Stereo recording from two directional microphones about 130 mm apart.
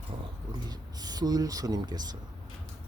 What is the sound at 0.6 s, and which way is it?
Speech, 30° right (ahead or behind).